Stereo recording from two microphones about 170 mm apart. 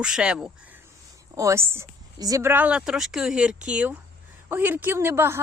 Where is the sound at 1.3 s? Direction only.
15° right (ahead or behind).